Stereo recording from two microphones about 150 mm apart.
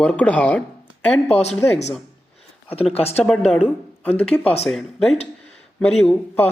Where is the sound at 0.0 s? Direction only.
10° left (ahead or behind).